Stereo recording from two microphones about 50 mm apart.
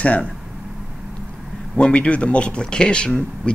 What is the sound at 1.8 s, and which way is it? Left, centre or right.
Speech, left.